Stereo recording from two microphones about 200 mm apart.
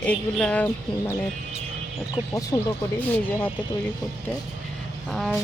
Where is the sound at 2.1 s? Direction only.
15° left (ahead or behind).